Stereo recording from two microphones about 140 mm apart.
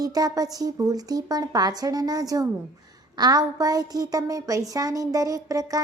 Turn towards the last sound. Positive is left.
turn(degrees=-25)  # may be behind; listen again after turning